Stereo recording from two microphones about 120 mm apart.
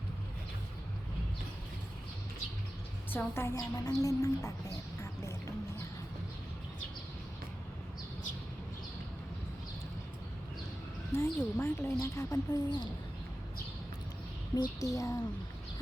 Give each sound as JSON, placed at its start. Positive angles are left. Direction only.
{"t": 3.1, "sound": "a woman's voice", "side_deg": 20}
{"t": 11.1, "sound": "a sound", "side_deg": 20}
{"t": 11.5, "sound": "a woman's voice", "side_deg": 20}
{"t": 14.5, "sound": "a woman's voice", "side_deg": 30}